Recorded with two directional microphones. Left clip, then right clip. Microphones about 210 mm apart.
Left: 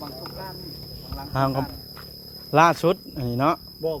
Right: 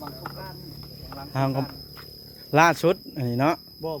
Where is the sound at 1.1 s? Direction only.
10° right (ahead or behind).